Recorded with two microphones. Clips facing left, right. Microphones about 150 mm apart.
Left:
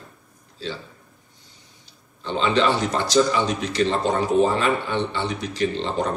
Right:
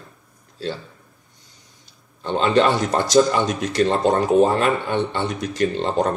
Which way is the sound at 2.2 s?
50° right (ahead or behind).